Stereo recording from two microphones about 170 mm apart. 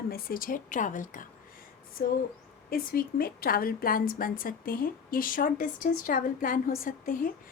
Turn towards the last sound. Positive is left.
turn(degrees=55)  # may be behind; listen again after turning